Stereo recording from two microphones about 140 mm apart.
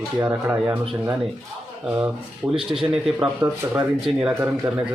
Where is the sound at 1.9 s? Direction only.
10° right (ahead or behind).